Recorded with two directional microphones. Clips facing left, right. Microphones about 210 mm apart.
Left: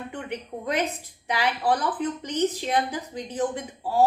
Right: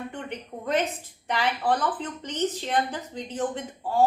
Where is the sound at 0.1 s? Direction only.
10° left (ahead or behind).